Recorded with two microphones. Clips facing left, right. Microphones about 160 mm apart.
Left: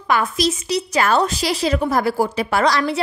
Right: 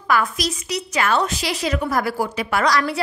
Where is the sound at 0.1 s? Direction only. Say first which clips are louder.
Left 2 dB; 25° left (ahead or behind).